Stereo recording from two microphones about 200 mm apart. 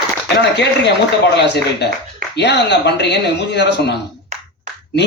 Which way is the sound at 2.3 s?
60° left (ahead or behind).